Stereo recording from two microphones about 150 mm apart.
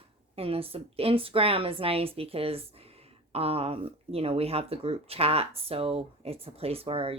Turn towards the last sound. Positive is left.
turn(degrees=-40)  # may be behind; listen again after turning